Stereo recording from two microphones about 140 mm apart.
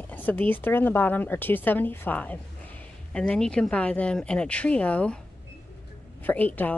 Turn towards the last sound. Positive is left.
turn(degrees=10)  # may be behind; listen again after turning